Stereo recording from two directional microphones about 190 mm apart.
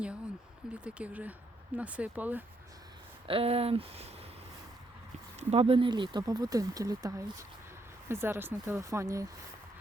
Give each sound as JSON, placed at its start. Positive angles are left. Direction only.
{"t": 0.7, "sound": "speech", "side_deg": -5}
{"t": 3.2, "sound": "speech", "side_deg": -30}
{"t": 5.4, "sound": "speech", "side_deg": -35}